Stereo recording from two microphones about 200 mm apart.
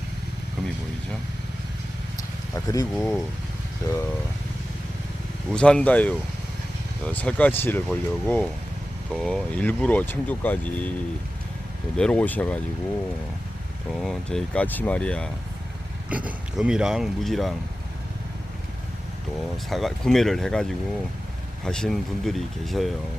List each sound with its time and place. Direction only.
2.6 s speech: 15° left (ahead or behind)
2.9 s speech: centre (ahead or behind)
5.5 s speech: 5° left (ahead or behind)
11.9 s speech: 5° left (ahead or behind)
14.0 s speech: 5° left (ahead or behind)
16.0 s speech: 5° right (ahead or behind)
19.7 s speech: centre (ahead or behind)